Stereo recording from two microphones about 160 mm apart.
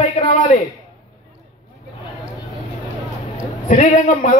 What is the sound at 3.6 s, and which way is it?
Speech, 45° left (ahead or behind).